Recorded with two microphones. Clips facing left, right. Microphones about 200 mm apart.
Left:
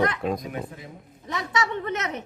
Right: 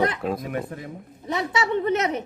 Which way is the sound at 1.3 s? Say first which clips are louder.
Right 3 dB; 30° right (ahead or behind).